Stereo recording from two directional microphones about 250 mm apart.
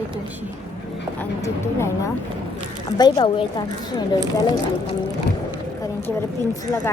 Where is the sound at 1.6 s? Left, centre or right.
Centre.